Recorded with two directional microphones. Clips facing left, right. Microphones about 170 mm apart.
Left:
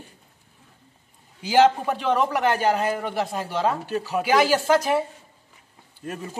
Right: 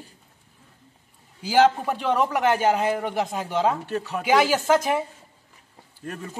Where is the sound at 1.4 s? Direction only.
5° right (ahead or behind).